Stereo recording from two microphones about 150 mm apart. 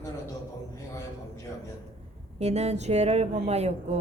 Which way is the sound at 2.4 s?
45° right (ahead or behind).